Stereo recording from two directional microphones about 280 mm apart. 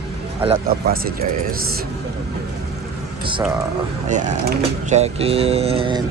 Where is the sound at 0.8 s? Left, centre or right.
Right.